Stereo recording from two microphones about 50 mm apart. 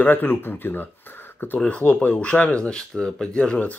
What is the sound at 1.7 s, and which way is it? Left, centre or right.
Speech, left.